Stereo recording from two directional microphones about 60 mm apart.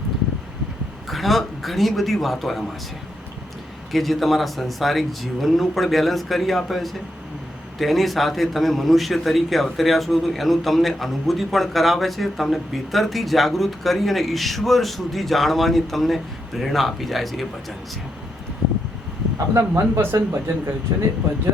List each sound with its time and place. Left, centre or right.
1.0 s a man's voice: centre
3.9 s a man's voice: centre
19.5 s speech: right
20.9 s speech: right